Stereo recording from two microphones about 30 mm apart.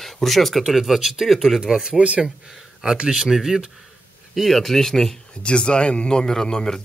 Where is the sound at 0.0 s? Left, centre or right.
Centre.